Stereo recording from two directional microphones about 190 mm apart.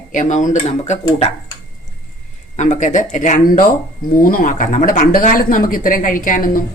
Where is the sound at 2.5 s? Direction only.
40° left (ahead or behind).